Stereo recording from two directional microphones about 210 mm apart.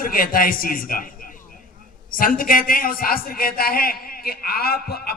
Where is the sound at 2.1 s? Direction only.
40° left (ahead or behind).